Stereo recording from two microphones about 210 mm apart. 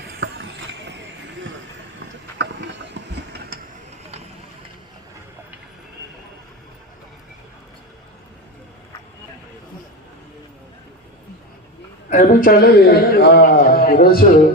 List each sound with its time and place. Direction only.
0.0 s vehicle: 50° right (ahead or behind)
2.0 s a sound: 55° right (ahead or behind)
12.1 s a man's voice: 35° left (ahead or behind)